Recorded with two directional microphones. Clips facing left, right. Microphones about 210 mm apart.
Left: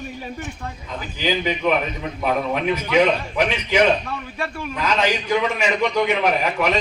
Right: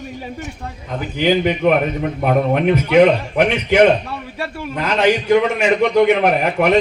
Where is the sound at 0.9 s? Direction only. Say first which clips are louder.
Right 7 dB; 60° right (ahead or behind).